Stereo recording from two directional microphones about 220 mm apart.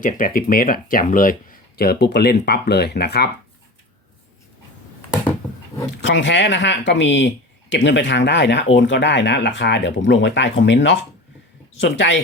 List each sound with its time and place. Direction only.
0.0 s speech: 40° left (ahead or behind)
6.1 s speech: 55° left (ahead or behind)